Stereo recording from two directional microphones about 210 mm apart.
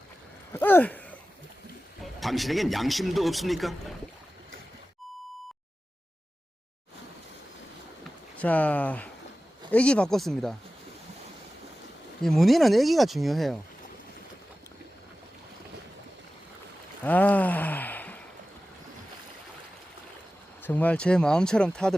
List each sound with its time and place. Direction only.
0.5 s speech: 10° left (ahead or behind)
2.2 s speech: centre (ahead or behind)
8.4 s speech: 5° left (ahead or behind)
12.2 s speech: centre (ahead or behind)
17.0 s gasp: 10° left (ahead or behind)
20.6 s speech: 10° left (ahead or behind)